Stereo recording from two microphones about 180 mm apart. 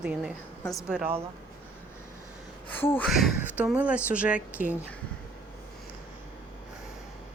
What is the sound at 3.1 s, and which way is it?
A woman's voice, centre (ahead or behind).